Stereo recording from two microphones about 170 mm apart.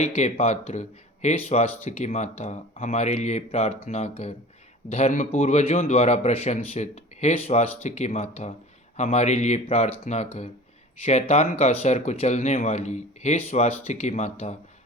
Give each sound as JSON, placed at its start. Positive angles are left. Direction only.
{"t": 0.0, "sound": "a man's voice", "side_deg": 40}